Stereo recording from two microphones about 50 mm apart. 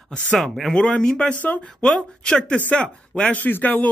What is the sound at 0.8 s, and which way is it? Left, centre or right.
Speech, centre.